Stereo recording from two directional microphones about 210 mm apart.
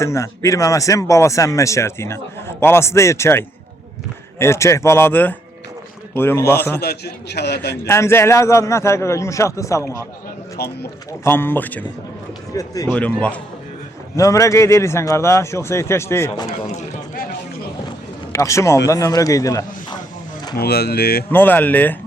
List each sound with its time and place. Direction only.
0.0 s speech: 15° left (ahead or behind)
6.8 s a man's voice: 50° left (ahead or behind)
7.9 s speech: 10° left (ahead or behind)
10.6 s a man's voice: 50° left (ahead or behind)
11.2 s speech: 10° left (ahead or behind)
16.5 s a sound: 35° left (ahead or behind)
17.8 s a sound: 15° left (ahead or behind)
18.9 s speech: 15° left (ahead or behind)
20.6 s a man's voice: 50° left (ahead or behind)
21.2 s speech: 10° left (ahead or behind)